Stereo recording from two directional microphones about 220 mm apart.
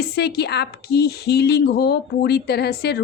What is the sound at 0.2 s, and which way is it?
Speech, 50° left (ahead or behind).